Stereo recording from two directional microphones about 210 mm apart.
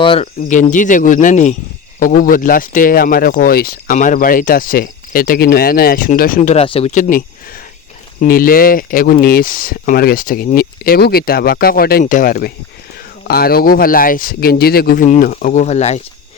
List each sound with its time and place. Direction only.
0.0 s speech: 25° left (ahead or behind)
0.4 s speech: 40° left (ahead or behind)